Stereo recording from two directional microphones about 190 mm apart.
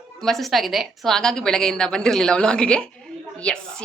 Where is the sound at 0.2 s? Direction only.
Centre (ahead or behind).